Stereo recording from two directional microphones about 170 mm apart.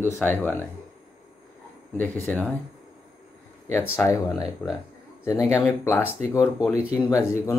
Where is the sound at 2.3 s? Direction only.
10° left (ahead or behind).